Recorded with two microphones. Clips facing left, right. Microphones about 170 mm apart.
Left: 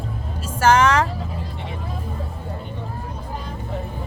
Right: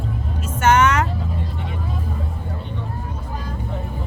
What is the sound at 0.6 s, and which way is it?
Vehicle, 35° left (ahead or behind).